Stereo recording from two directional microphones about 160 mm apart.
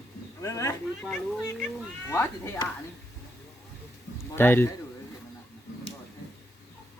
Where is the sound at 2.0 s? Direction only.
15° left (ahead or behind).